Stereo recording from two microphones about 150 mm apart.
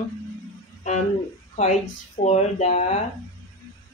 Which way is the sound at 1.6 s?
50° left (ahead or behind).